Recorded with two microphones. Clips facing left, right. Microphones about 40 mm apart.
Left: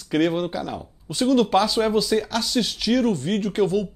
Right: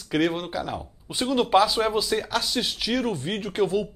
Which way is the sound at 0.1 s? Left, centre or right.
Centre.